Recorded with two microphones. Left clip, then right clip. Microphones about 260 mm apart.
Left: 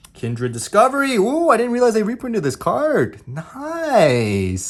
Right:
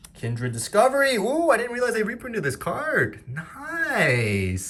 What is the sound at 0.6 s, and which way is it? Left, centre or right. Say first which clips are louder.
Speech: left 4 dB; left.